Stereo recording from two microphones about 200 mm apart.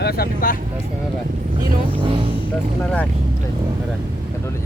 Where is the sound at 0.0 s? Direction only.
50° left (ahead or behind).